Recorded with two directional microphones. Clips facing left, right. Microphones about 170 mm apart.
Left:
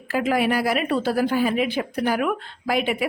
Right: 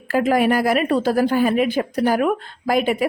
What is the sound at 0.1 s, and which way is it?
A woman's voice, 45° right (ahead or behind).